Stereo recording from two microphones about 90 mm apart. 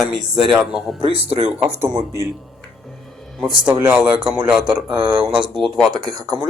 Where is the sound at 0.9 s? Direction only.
90° right.